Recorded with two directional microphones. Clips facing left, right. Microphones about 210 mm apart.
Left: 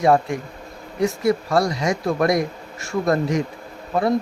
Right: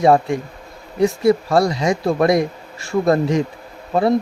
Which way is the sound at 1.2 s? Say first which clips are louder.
Right 4 dB; 30° right (ahead or behind).